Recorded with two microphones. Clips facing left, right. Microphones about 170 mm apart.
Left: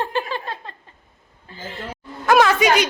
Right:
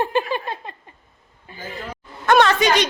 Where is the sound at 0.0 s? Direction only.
15° right (ahead or behind).